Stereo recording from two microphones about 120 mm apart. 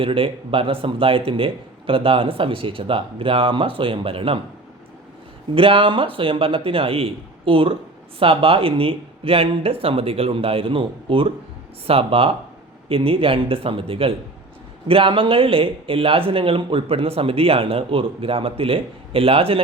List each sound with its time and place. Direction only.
0.0 s speech: 50° right (ahead or behind)
5.5 s speech: 45° right (ahead or behind)